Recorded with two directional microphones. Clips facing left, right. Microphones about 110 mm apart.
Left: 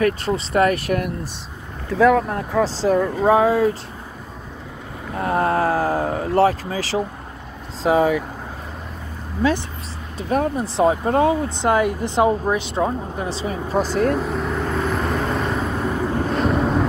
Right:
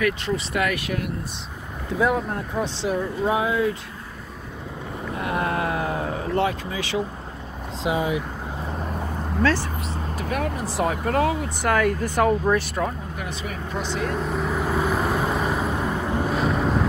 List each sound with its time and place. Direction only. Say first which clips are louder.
0.0 s speech: left 4 dB; 40° left (ahead or behind)
2.0 s speech: left 7 dB; 90° left
2.6 s speech: left 8 dB; 40° left (ahead or behind)
5.1 s speech: left 6 dB; 35° left (ahead or behind)
9.4 s speech: left 2 dB; 15° left (ahead or behind)
10.1 s speech: left 7 dB; 30° left (ahead or behind)
14.1 s vehicle: left 2 dB; centre (ahead or behind)